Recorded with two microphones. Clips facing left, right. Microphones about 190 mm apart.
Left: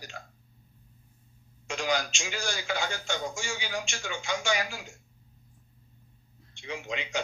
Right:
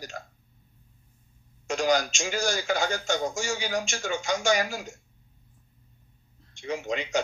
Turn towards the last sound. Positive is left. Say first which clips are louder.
# right 5 dB
turn(degrees=-45)  # may be behind; listen again after turning